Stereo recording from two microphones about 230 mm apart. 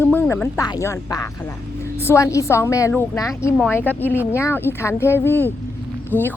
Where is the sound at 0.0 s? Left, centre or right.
Centre.